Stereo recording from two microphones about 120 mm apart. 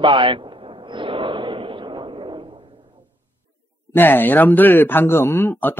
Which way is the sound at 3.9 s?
15° left (ahead or behind).